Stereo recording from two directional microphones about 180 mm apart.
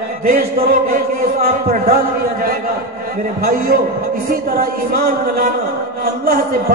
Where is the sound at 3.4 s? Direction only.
60° right (ahead or behind).